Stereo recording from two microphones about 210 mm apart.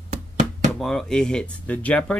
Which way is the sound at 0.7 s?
Centre (ahead or behind).